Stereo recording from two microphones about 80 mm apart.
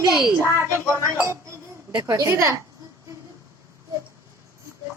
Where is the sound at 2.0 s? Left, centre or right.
Right.